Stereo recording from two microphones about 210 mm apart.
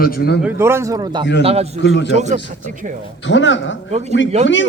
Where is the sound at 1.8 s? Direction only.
60° left (ahead or behind).